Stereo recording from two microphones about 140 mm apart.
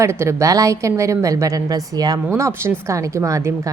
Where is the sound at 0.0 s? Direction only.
20° right (ahead or behind).